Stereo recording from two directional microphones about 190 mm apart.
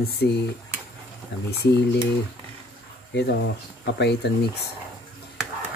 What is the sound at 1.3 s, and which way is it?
Speech, 60° left (ahead or behind).